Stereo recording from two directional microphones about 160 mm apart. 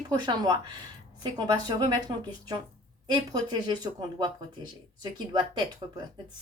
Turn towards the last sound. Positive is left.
turn(degrees=-25)  # may be behind; listen again after turning